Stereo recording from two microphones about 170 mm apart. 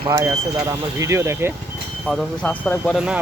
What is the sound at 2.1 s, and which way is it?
Speech, 5° left (ahead or behind).